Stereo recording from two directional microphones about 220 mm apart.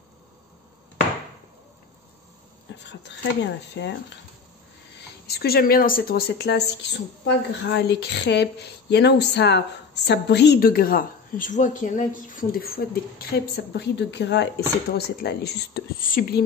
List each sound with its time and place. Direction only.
2.9 s a woman's voice: 50° left (ahead or behind)
5.2 s a woman's voice: 45° left (ahead or behind)